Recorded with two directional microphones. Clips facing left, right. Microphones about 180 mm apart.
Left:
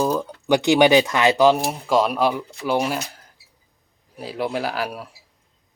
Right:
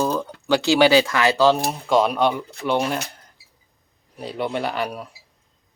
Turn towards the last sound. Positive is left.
turn(degrees=5)  # may be behind; listen again after turning